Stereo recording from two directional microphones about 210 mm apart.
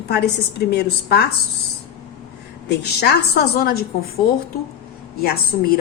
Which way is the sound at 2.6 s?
50° left (ahead or behind).